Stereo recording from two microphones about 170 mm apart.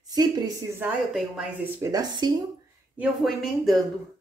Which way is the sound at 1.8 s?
20° right (ahead or behind).